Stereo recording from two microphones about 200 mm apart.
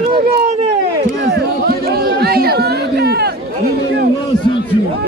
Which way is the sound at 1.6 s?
50° right (ahead or behind).